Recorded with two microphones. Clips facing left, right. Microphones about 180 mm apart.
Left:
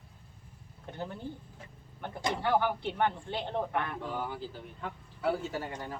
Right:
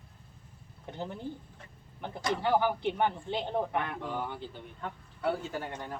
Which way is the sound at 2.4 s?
10° right (ahead or behind).